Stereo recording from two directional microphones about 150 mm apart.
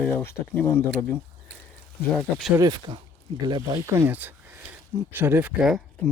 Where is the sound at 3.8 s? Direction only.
20° right (ahead or behind); by 5.8 s 5° right (ahead or behind).